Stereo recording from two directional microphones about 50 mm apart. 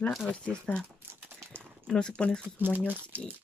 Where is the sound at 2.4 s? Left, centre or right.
Right.